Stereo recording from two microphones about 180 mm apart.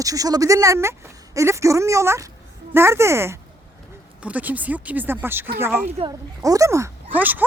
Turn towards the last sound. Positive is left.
turn(degrees=-10)  # may be behind; listen again after turning